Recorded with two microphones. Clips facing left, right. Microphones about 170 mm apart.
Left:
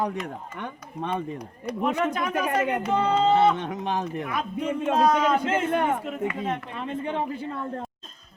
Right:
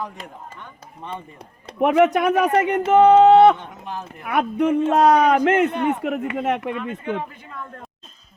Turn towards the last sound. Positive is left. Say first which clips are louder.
# left 6 dB
turn(degrees=30)  # may be behind; listen again after turning